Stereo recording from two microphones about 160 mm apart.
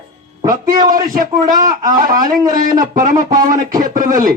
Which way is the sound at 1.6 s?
25° right (ahead or behind).